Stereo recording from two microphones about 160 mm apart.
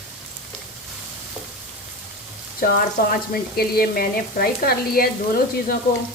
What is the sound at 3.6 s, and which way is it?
A woman's voice, 70° left (ahead or behind).